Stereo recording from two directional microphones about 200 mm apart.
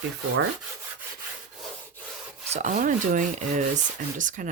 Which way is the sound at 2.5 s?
40° right (ahead or behind).